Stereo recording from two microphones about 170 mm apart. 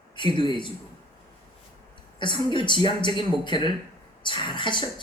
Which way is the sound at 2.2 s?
30° left (ahead or behind).